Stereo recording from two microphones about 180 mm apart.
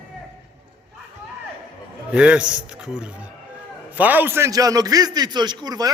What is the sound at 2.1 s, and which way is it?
A man's voice, 5° right (ahead or behind).